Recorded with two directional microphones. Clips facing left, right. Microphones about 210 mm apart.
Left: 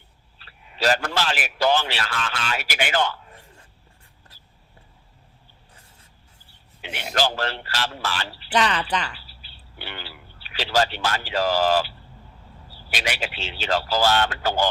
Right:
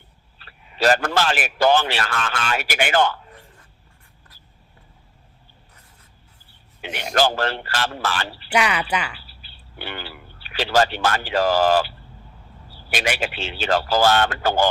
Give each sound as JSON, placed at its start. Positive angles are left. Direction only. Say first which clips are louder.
{"t": 0.3, "sound": "a man's voice", "louder": "right 5 dB", "side_deg": -50}
{"t": 7.1, "sound": "a man's voice", "louder": "right 4 dB", "side_deg": -50}
{"t": 8.5, "sound": "speech", "louder": "right 1 dB", "side_deg": -10}
{"t": 9.1, "sound": "a man's voice", "louder": "right 1 dB", "side_deg": -50}